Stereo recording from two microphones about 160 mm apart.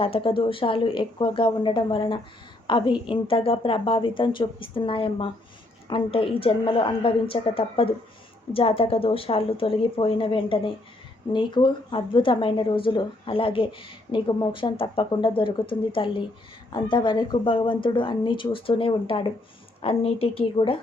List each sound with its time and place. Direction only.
0.0 s a woman's voice: 35° left (ahead or behind)